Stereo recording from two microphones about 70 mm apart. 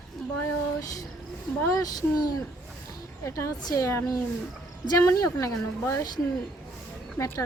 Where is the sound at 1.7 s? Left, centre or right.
Left.